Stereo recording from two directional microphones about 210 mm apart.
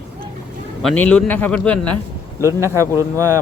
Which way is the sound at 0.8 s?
5° left (ahead or behind).